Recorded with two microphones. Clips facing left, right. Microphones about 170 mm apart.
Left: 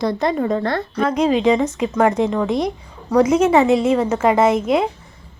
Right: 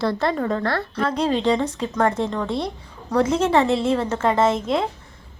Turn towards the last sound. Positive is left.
turn(degrees=5)  # may be behind; listen again after turning